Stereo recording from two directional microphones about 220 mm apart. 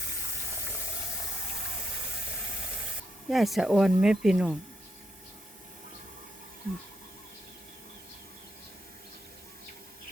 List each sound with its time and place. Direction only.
3.2 s speech: centre (ahead or behind)